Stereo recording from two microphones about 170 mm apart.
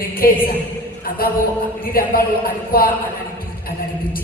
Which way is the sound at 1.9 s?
60° left (ahead or behind).